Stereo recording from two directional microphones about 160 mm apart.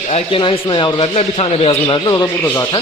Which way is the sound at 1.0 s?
40° left (ahead or behind).